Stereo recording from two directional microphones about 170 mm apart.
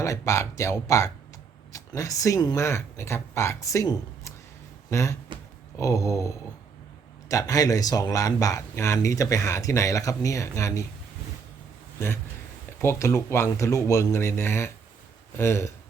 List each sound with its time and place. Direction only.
0.0 s speech: 15° left (ahead or behind)
11.9 s a man's voice: 15° left (ahead or behind)